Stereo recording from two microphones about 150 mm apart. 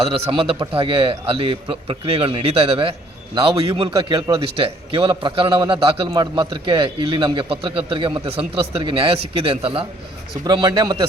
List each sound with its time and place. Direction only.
0.1 s a man's voice: 35° right (ahead or behind)
10.4 s a man's voice: 25° right (ahead or behind)